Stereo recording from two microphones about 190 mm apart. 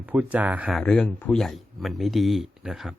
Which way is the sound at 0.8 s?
5° left (ahead or behind).